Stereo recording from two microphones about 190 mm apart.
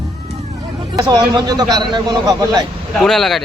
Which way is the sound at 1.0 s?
20° right (ahead or behind).